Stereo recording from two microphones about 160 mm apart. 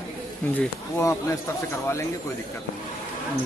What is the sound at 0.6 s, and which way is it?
Speech, 15° left (ahead or behind).